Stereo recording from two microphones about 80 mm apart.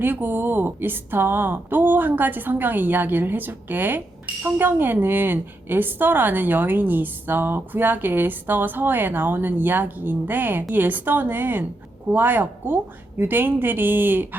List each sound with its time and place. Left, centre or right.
0.0 s a woman's voice: right